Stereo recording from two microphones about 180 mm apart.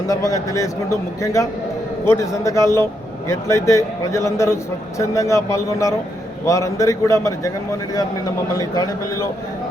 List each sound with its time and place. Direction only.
0.1 s a man's voice: 20° left (ahead or behind)
8.5 s a man's voice: 20° left (ahead or behind)